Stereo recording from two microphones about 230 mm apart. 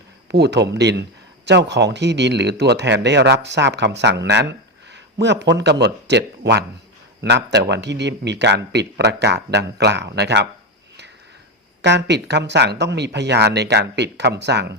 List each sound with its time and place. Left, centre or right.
0.3 s speech: right
11.8 s speech: right